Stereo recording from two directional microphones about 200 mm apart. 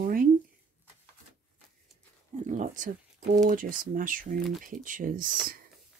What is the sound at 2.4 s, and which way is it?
Speech, 40° right (ahead or behind).